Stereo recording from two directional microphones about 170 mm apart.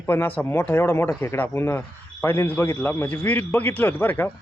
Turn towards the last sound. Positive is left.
turn(degrees=10)  # may be behind; listen again after turning